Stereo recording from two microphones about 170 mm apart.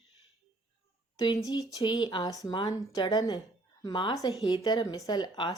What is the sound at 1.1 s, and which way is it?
A woman's voice, 20° left (ahead or behind).